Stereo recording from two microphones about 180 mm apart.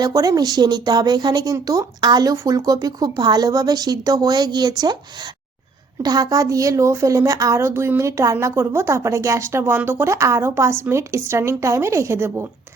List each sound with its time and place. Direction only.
0.0 s a woman's voice: 20° right (ahead or behind)